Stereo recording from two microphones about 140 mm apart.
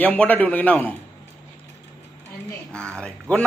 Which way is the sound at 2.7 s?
5° left (ahead or behind).